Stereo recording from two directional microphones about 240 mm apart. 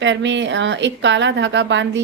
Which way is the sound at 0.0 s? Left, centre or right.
Right.